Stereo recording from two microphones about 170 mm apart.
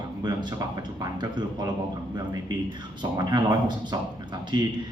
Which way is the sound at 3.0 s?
25° right (ahead or behind).